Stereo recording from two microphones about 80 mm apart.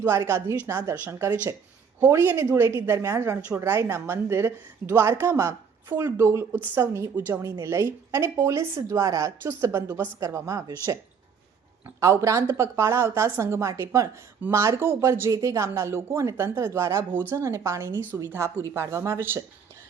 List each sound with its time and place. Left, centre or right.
0.3 s speech: right
5.9 s speech: right
6.1 s speech: right
7.6 s speech: right
11.9 s speech: right
17.2 s speech: right
17.4 s speech: right